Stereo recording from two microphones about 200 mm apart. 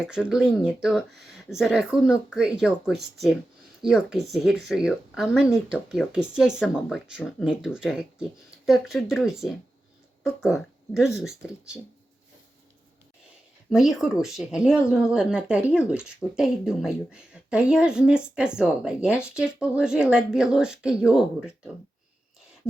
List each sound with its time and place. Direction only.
0.1 s speech: 5° right (ahead or behind)
13.7 s speech: centre (ahead or behind)